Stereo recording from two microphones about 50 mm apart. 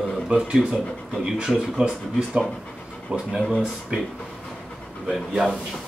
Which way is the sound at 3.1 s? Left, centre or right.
Right.